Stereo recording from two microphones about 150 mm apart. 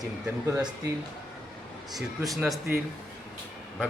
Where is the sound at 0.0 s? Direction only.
20° right (ahead or behind).